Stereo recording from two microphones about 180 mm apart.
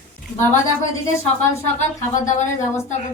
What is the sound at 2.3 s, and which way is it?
Speech, 40° left (ahead or behind).